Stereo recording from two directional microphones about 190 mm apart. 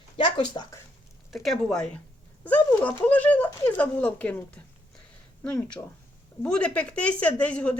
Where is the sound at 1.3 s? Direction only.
Centre (ahead or behind).